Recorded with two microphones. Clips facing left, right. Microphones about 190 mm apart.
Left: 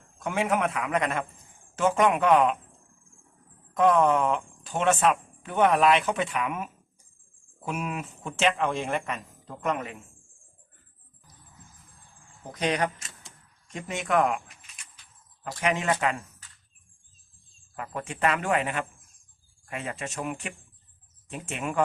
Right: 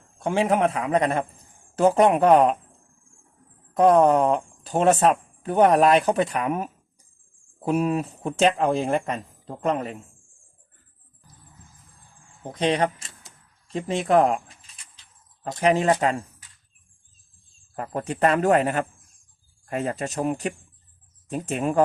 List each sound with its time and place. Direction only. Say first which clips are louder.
0.2 s speech: right 5 dB; 30° right (ahead or behind)
3.8 s speech: right 5 dB; 35° right (ahead or behind)
12.4 s speech: right 5 dB; 30° right (ahead or behind)
15.6 s speech: right 6 dB; 35° right (ahead or behind)
17.7 s speech: right 6 dB; 40° right (ahead or behind)